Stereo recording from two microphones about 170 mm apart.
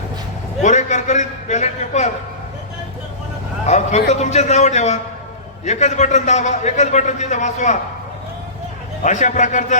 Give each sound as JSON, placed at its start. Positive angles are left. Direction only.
{"t": 0.6, "sound": "a sound", "side_deg": 45}
{"t": 3.7, "sound": "a man's voice", "side_deg": 40}
{"t": 9.0, "sound": "a man's voice", "side_deg": 45}